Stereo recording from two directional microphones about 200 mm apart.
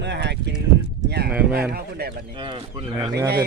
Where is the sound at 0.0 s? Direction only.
60° right (ahead or behind).